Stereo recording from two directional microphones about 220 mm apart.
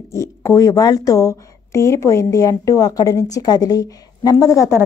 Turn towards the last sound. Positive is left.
turn(degrees=15)  # may be behind; listen again after turning